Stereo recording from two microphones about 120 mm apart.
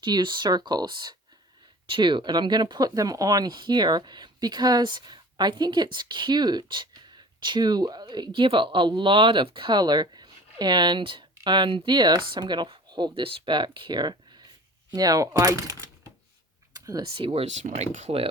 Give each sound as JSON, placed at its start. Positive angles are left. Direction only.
{"t": 0.0, "sound": "speech", "side_deg": -40}
{"t": 16.7, "sound": "computer keyboard", "side_deg": -30}
{"t": 17.1, "sound": "speech", "side_deg": -45}
{"t": 17.4, "sound": "speech", "side_deg": -75}